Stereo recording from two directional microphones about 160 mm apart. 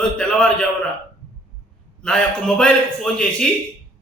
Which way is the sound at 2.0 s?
5° left (ahead or behind).